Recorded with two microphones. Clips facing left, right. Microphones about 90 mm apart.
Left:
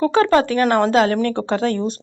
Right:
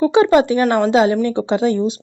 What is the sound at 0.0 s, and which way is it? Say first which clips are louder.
Speech: right 3 dB; 15° right (ahead or behind).